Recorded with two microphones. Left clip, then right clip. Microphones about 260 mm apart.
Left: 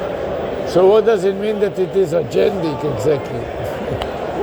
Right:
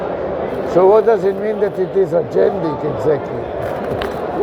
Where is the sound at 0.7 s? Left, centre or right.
Left.